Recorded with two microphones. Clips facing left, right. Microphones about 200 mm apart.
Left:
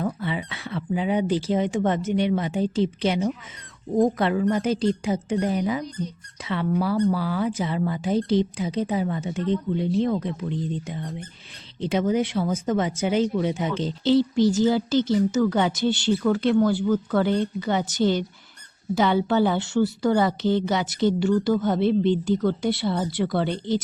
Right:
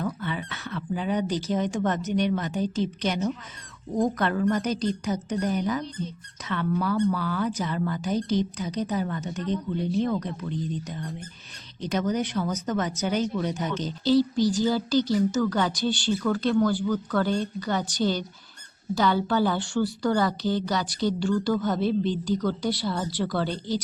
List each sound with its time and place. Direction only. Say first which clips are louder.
0.8 s speech: left 4 dB; 20° left (ahead or behind)
3.9 s speech: left 4 dB; 25° left (ahead or behind)